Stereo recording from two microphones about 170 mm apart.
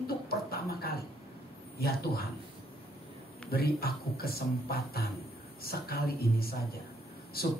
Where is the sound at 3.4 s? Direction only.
65° left (ahead or behind).